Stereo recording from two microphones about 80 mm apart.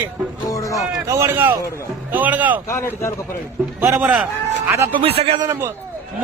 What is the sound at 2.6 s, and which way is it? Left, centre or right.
Speech, left.